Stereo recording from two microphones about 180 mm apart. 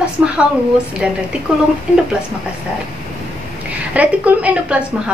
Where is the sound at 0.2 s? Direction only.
5° right (ahead or behind).